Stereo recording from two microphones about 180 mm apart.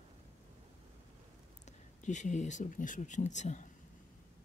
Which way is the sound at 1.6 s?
45° left (ahead or behind).